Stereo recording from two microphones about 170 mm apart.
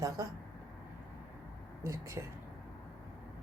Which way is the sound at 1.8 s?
20° right (ahead or behind).